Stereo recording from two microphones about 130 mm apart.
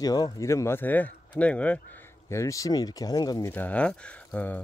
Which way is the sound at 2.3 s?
25° left (ahead or behind).